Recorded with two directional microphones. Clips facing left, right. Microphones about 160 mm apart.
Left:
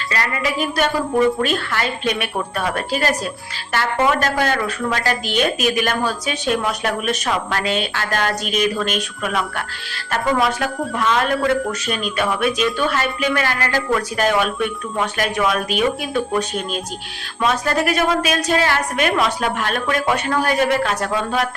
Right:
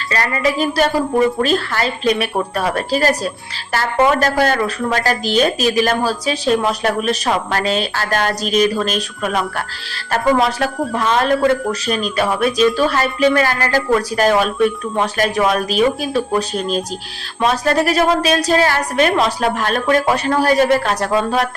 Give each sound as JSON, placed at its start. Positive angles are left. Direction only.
{"t": 0.1, "sound": "speech", "side_deg": -35}